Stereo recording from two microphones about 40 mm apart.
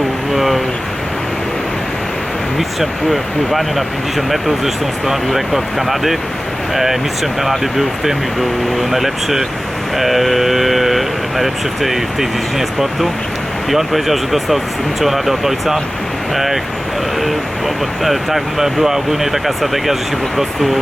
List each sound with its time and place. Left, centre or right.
0.3 s a sound: centre
3.1 s speech: centre
18.0 s speech: centre